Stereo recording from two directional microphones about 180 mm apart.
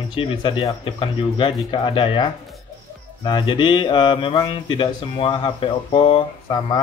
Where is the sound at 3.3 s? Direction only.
25° left (ahead or behind).